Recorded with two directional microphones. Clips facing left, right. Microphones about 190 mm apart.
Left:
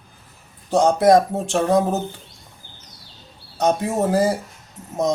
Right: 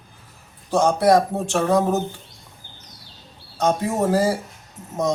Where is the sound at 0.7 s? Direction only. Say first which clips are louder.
Left 2 dB; 15° left (ahead or behind).